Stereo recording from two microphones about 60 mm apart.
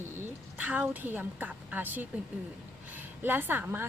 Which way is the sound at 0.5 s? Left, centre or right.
Right.